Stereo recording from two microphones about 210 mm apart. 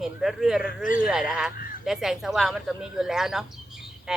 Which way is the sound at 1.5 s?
45° left (ahead or behind).